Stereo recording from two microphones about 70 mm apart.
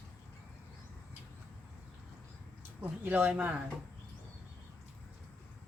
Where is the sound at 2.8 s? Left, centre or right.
Right.